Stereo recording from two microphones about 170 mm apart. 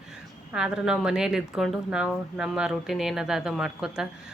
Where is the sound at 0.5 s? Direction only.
5° right (ahead or behind).